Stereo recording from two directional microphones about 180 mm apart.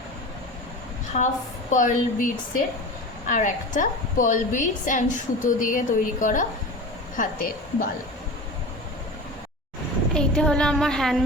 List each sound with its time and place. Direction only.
1.1 s a woman's voice: 40° left (ahead or behind)
10.2 s a woman's voice: 5° left (ahead or behind)